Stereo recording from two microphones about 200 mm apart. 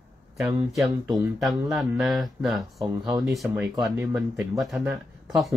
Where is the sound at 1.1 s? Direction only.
Centre (ahead or behind).